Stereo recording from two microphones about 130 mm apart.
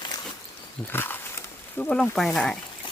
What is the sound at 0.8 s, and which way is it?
Speech, 15° left (ahead or behind).